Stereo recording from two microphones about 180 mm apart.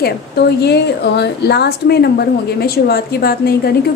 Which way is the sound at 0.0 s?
65° left (ahead or behind).